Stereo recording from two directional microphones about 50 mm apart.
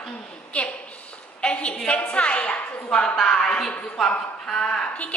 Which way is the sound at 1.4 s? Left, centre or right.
Left.